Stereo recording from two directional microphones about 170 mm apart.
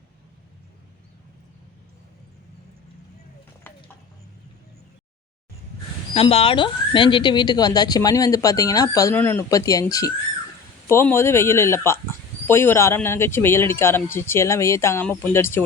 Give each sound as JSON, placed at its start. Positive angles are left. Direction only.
{"t": 6.1, "sound": "speech", "side_deg": 35}